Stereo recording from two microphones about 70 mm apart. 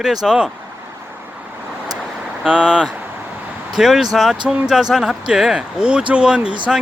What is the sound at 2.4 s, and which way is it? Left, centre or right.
A man's voice, centre.